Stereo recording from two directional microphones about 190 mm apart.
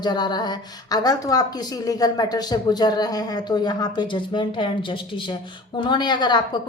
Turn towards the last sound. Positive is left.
turn(degrees=20)  # may be behind; listen again after turning